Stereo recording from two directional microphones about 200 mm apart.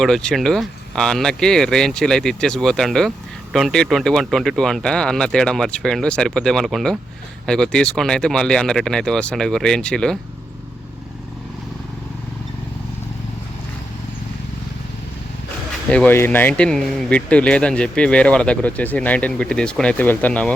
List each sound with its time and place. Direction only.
0.0 s speech: 5° left (ahead or behind)
15.9 s speech: 5° left (ahead or behind)